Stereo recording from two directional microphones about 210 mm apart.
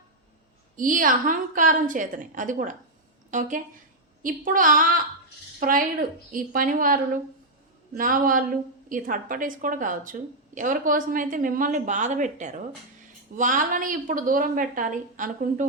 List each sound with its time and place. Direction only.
0.8 s a woman's voice: 40° right (ahead or behind)
4.2 s a woman's voice: 40° right (ahead or behind)